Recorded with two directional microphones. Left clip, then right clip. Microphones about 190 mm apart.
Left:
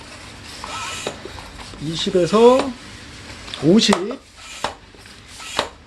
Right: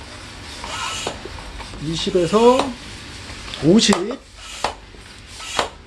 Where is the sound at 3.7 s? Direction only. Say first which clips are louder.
Even; 15° left (ahead or behind).